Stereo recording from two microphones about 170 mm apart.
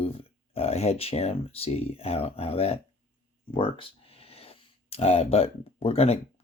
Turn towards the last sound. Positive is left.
turn(degrees=35)  # may be behind; listen again after turning